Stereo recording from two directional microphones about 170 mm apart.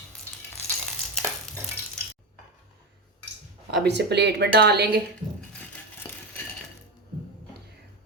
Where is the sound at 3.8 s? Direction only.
80° right.